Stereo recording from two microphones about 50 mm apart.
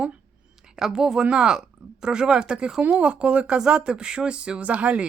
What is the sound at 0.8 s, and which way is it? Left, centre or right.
Speech, centre.